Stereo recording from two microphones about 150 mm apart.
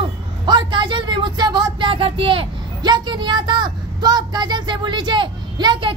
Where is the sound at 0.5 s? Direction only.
30° right (ahead or behind).